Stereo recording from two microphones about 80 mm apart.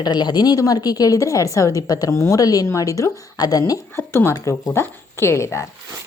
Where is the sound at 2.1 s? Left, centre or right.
Left.